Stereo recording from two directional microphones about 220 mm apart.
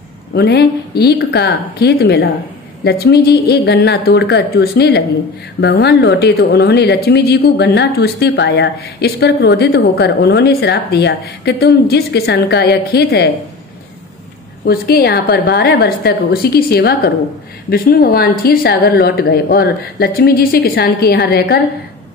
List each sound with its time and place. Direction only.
0.3 s speech: 50° left (ahead or behind)
14.7 s speech: 45° left (ahead or behind)